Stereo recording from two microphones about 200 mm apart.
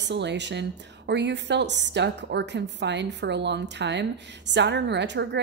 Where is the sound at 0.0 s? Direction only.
60° right (ahead or behind).